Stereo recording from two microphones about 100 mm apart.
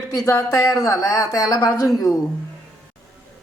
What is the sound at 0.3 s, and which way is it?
Speech, 30° left (ahead or behind).